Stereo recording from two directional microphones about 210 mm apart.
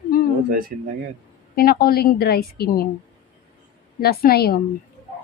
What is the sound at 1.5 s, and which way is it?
A woman's voice, 45° left (ahead or behind).